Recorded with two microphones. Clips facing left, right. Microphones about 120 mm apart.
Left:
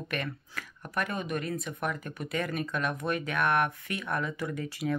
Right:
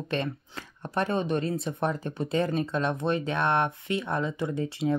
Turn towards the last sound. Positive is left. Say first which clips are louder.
# right 5 dB
turn(degrees=-25)  # may be behind; listen again after turning